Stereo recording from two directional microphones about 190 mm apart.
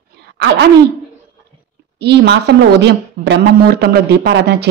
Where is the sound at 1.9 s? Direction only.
60° right (ahead or behind).